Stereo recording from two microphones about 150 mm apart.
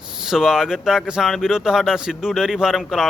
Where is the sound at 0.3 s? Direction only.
5° right (ahead or behind).